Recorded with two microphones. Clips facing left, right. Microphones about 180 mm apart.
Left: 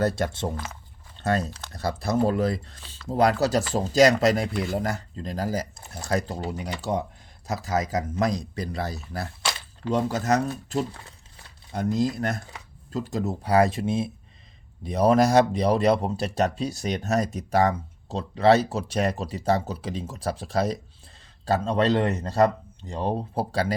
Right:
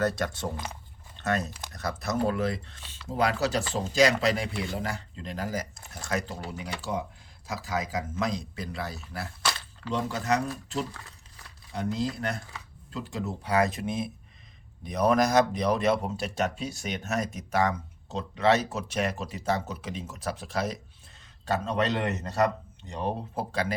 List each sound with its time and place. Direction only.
0.0 s speech: 30° left (ahead or behind)
11.7 s speech: 45° left (ahead or behind)